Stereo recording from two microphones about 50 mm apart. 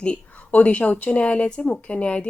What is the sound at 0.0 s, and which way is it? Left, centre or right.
Speech, left.